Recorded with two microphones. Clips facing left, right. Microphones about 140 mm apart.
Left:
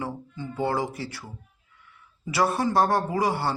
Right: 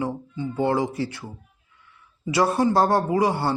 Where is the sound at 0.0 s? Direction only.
20° right (ahead or behind).